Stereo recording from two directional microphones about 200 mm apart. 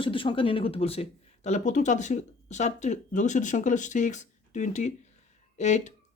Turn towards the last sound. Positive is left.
turn(degrees=35)  # may be behind; listen again after turning